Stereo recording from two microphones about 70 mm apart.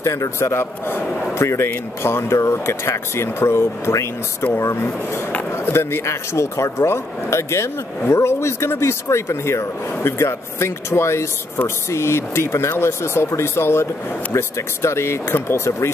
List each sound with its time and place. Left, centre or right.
0.0 s speech: left